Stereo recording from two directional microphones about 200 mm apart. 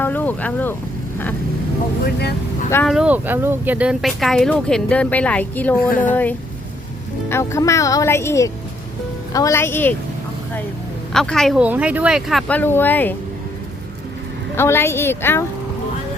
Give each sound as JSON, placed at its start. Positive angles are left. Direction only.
{"t": 0.0, "sound": "speech", "side_deg": 10}
{"t": 2.8, "sound": "speech", "side_deg": -5}
{"t": 5.9, "sound": "speech", "side_deg": 40}
{"t": 7.3, "sound": "speech", "side_deg": 15}
{"t": 11.1, "sound": "speech", "side_deg": 5}
{"t": 14.5, "sound": "speech", "side_deg": 10}